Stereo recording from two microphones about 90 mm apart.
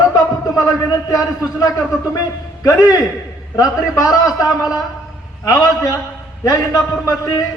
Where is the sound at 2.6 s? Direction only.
40° left (ahead or behind).